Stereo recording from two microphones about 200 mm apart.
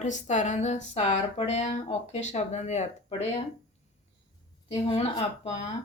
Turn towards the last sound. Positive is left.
turn(degrees=30)  # may be behind; listen again after turning